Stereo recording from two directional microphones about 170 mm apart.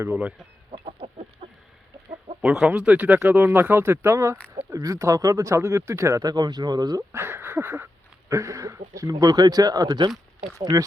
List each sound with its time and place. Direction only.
0.0 s speech: 10° right (ahead or behind)
0.7 s chicken: 35° right (ahead or behind)
2.4 s speech: 5° right (ahead or behind); by 10.8 s 20° right (ahead or behind)